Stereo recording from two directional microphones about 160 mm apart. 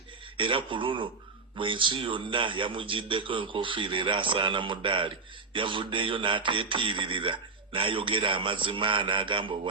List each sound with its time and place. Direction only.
0.3 s speech: 30° right (ahead or behind)